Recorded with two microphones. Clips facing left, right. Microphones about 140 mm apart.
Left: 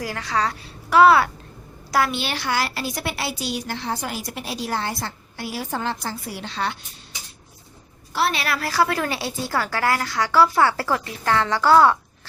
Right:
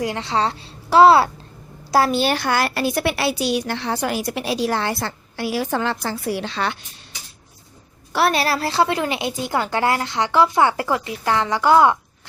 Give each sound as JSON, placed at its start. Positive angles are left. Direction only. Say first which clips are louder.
{"t": 0.0, "sound": "a woman's voice", "louder": "right 3 dB", "side_deg": -25}
{"t": 8.3, "sound": "a woman's voice", "louder": "right 5 dB", "side_deg": -35}